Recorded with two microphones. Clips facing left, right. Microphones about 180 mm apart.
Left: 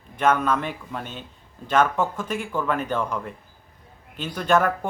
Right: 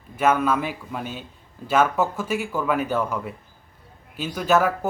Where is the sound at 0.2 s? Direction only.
5° right (ahead or behind).